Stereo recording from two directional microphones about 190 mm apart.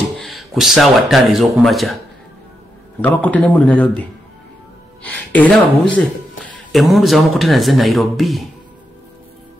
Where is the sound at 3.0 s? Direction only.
10° left (ahead or behind).